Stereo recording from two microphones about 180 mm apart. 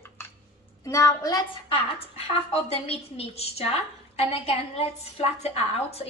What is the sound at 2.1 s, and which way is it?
A woman's voice, 35° left (ahead or behind).